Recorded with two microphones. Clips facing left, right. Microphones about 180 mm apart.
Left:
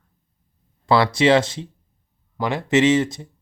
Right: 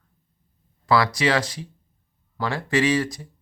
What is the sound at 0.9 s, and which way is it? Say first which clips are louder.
Speech: left 5 dB; 25° left (ahead or behind).